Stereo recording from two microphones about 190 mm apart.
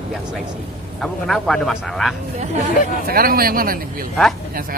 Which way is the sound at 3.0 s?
50° right (ahead or behind).